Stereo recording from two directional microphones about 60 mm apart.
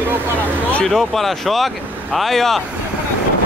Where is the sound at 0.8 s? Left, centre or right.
Centre.